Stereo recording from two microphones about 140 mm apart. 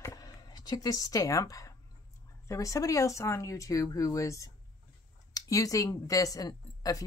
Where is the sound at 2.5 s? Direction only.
25° left (ahead or behind).